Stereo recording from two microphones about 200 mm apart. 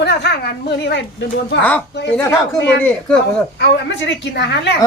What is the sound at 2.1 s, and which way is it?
Speech, 10° left (ahead or behind).